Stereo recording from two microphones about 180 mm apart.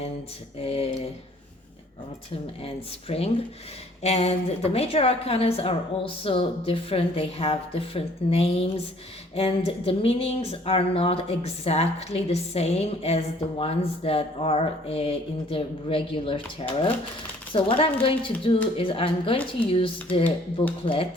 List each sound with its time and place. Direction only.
0.6 s speech: 35° left (ahead or behind)
2.6 s a woman's voice: 35° left (ahead or behind)